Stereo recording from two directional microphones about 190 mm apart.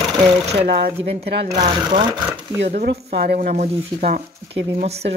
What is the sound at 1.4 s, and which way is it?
Speech, 35° right (ahead or behind).